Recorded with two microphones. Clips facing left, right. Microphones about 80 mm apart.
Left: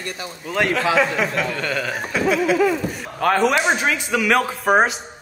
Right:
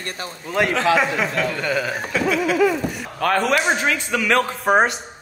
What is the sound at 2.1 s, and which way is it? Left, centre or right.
A man's voice, centre.